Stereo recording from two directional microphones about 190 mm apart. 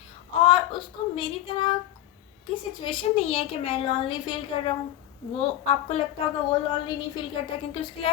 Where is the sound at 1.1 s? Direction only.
25° left (ahead or behind).